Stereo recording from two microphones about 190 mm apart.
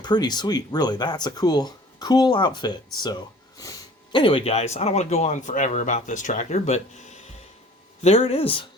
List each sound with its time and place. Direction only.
0.0 s speech: 20° left (ahead or behind); by 6.8 s 35° left (ahead or behind)
8.0 s speech: 30° left (ahead or behind)